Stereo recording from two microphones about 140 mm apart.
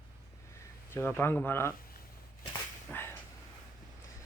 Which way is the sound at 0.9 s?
15° left (ahead or behind).